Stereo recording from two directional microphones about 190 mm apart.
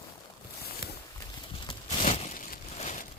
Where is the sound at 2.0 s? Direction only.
35° left (ahead or behind).